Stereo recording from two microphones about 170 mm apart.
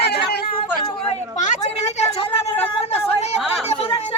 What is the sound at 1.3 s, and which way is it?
Speech, 45° left (ahead or behind).